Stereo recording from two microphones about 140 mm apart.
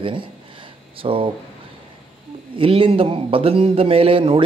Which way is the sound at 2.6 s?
40° right (ahead or behind).